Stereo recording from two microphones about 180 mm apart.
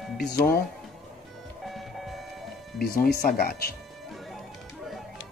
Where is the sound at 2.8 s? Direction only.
55° left (ahead or behind).